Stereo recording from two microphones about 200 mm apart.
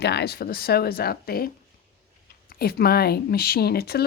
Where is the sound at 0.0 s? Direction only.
55° left (ahead or behind).